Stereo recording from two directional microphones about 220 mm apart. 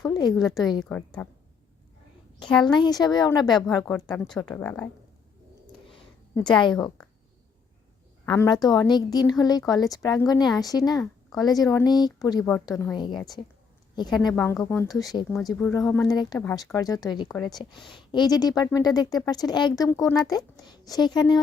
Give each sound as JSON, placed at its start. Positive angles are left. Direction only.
{"t": 0.0, "sound": "a sound", "side_deg": 20}
{"t": 0.3, "sound": "a woman's voice", "side_deg": 0}
{"t": 2.5, "sound": "a woman's voice", "side_deg": 0}
{"t": 2.7, "sound": "speech", "side_deg": 20}
{"t": 4.1, "sound": "a woman's voice", "side_deg": 5}
{"t": 6.3, "sound": "speech", "side_deg": 20}
{"t": 8.3, "sound": "speech", "side_deg": 15}
{"t": 12.7, "sound": "a woman's voice", "side_deg": 0}
{"t": 14.3, "sound": "speech", "side_deg": 10}
{"t": 16.4, "sound": "speech", "side_deg": 10}
{"t": 17.2, "sound": "a woman's voice", "side_deg": 5}
{"t": 17.5, "sound": "speech", "side_deg": 20}